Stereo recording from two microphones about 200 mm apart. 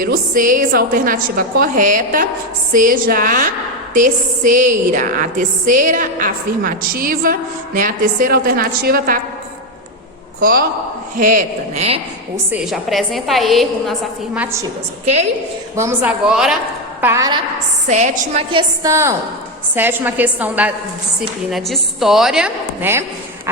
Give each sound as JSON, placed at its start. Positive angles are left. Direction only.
{"t": 0.0, "sound": "a woman's voice", "side_deg": -45}
{"t": 11.2, "sound": "speech", "side_deg": -40}
{"t": 12.5, "sound": "a woman's voice", "side_deg": -5}
{"t": 15.0, "sound": "speech", "side_deg": -35}
{"t": 15.7, "sound": "a woman's voice", "side_deg": -10}
{"t": 17.0, "sound": "a woman's voice", "side_deg": -15}
{"t": 17.8, "sound": "speech", "side_deg": -35}
{"t": 18.5, "sound": "a woman's voice", "side_deg": -15}